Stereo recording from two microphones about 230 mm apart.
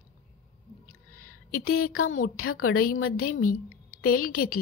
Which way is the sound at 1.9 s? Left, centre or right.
Left.